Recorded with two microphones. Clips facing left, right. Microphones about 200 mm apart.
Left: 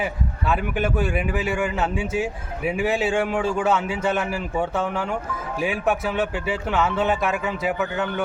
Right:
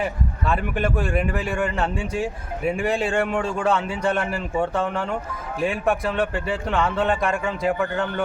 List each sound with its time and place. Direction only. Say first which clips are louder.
0.0 s speech: right 1 dB; 5° left (ahead or behind)